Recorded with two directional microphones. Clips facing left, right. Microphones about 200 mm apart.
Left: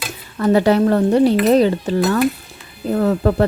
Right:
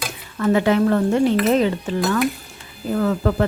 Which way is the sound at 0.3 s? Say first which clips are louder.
Left 3 dB; 35° left (ahead or behind).